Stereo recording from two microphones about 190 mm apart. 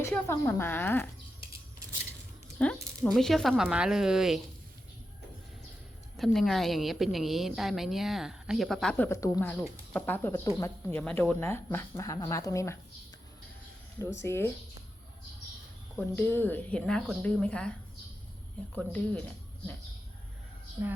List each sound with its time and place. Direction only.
0.0 s a woman's voice: 10° left (ahead or behind)
2.6 s a woman's voice: 5° left (ahead or behind)
6.1 s a woman's voice: centre (ahead or behind); by 12.7 s 15° left (ahead or behind)
14.0 s a woman's voice: 15° left (ahead or behind)
16.0 s a woman's voice: 10° left (ahead or behind)